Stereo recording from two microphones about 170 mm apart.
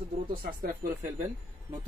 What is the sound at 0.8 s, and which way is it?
Speech, 55° right (ahead or behind).